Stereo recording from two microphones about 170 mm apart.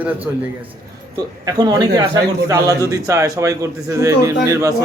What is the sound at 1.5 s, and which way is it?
A man's voice, 25° right (ahead or behind).